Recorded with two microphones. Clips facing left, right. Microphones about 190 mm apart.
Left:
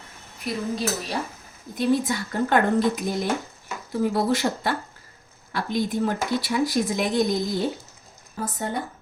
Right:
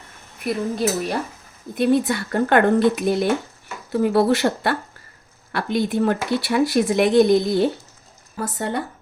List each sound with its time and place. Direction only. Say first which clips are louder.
0.4 s speech: right 5 dB; 55° right (ahead or behind); by 8.8 s 70° right (ahead or behind)